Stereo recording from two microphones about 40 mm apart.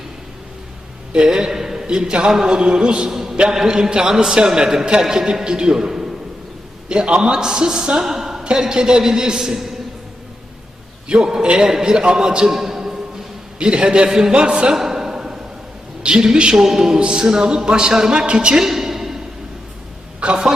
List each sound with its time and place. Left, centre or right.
1.1 s a sound: right
1.9 s speech: right
3.1 s a sound: centre
3.5 s a man's voice: centre
6.8 s a man's voice: right; by 9.7 s centre
11.1 s speech: centre
12.5 s a sound: centre
13.6 s speech: right
14.8 s a sound: centre
16.0 s a man's voice: right
18.7 s music: centre
20.2 s speech: right